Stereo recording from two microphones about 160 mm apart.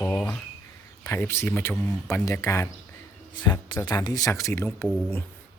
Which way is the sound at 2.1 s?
20° left (ahead or behind).